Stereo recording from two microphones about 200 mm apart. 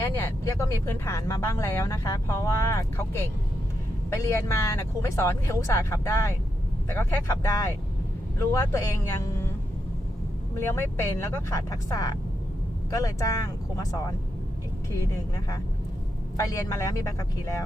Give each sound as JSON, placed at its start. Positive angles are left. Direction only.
{"t": 0.0, "sound": "speech", "side_deg": 15}
{"t": 10.7, "sound": "speech", "side_deg": 10}
{"t": 16.4, "sound": "speech", "side_deg": 15}